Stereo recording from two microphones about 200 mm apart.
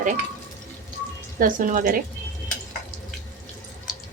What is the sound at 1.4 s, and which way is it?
Speech, 45° right (ahead or behind).